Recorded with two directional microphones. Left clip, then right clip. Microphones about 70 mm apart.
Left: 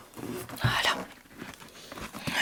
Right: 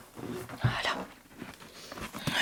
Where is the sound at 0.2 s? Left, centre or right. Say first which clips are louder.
Left 3 dB; left.